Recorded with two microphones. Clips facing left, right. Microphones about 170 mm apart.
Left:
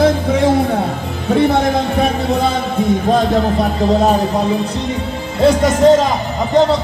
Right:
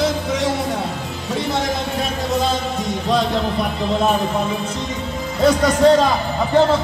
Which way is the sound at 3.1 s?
40° left (ahead or behind).